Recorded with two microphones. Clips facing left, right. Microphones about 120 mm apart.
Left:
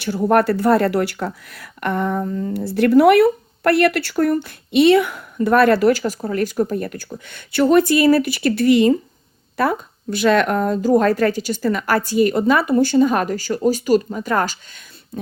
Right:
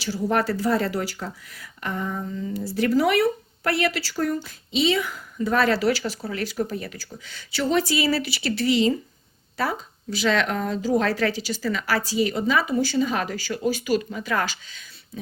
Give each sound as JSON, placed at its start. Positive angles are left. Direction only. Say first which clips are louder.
{"t": 0.0, "sound": "a woman's voice", "louder": "left 7 dB", "side_deg": 55}